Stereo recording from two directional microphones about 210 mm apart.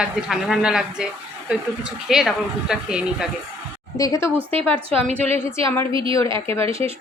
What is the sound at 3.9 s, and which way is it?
Speech, 15° left (ahead or behind).